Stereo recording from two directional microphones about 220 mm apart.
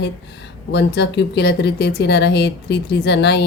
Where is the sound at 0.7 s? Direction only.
50° left (ahead or behind).